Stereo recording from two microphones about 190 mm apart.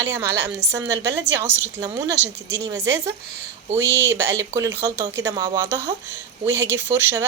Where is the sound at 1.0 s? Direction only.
70° right (ahead or behind).